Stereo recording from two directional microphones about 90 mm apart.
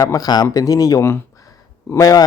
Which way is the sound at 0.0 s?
45° left (ahead or behind).